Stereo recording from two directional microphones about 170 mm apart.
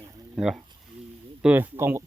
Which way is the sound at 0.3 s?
Centre (ahead or behind).